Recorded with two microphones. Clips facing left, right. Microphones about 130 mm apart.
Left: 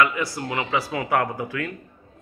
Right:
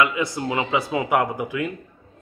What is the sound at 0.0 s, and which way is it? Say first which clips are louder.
A man's voice: right 1 dB; 20° right (ahead or behind).